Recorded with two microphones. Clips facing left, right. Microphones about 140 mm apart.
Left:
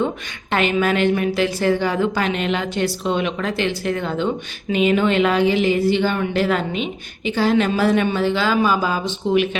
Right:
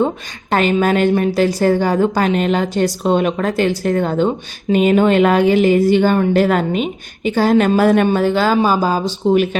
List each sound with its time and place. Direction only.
0.5 s a woman's voice: 40° right (ahead or behind)